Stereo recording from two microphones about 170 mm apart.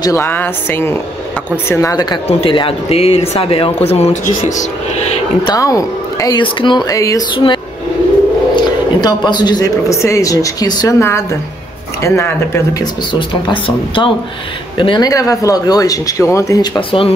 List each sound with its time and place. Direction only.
0.0 s a woman's voice: 15° left (ahead or behind)
2.2 s speech: 30° left (ahead or behind)
5.5 s speech: 20° left (ahead or behind)
9.0 s a woman's voice: 25° left (ahead or behind)
13.1 s speech: 30° left (ahead or behind)